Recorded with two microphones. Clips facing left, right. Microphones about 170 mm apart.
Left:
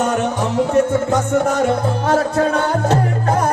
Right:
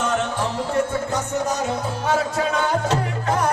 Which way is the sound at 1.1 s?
55° left (ahead or behind).